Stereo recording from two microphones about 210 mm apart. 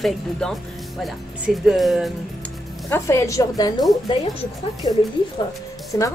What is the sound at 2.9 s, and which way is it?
Speech, 10° left (ahead or behind).